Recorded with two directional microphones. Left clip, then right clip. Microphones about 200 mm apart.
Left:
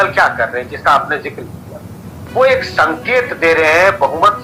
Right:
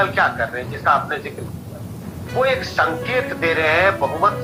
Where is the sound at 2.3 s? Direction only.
45° left (ahead or behind).